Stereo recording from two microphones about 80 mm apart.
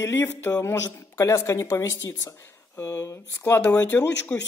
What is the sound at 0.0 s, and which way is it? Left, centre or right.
Speech, left.